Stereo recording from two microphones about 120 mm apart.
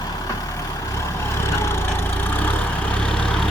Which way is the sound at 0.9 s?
20° left (ahead or behind).